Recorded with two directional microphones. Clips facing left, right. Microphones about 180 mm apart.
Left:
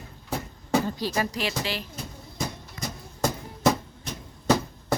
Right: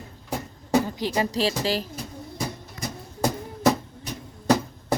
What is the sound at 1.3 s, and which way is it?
Speech, 35° right (ahead or behind).